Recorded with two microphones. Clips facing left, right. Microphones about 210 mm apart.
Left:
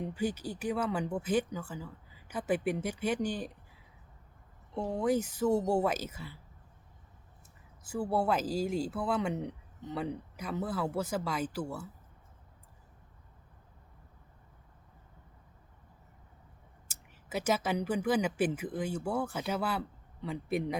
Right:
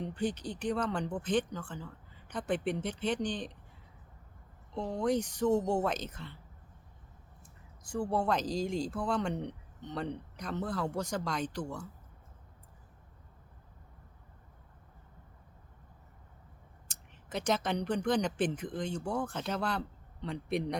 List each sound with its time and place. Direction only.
0.0 s speech: 5° left (ahead or behind)
4.7 s speech: 10° left (ahead or behind)
7.9 s speech: 5° left (ahead or behind)
16.9 s a man's voice: 5° left (ahead or behind)